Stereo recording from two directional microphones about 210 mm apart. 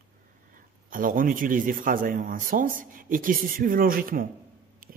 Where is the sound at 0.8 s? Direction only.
40° right (ahead or behind).